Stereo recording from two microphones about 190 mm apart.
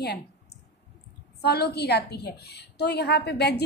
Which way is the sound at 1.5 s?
60° left (ahead or behind).